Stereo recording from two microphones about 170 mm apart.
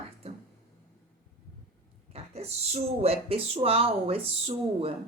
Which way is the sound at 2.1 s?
40° right (ahead or behind).